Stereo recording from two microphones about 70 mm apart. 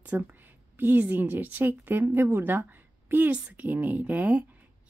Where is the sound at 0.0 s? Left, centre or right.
Right.